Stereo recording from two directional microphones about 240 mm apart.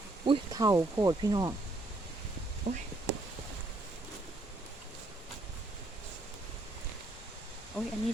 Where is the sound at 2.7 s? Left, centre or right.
Right.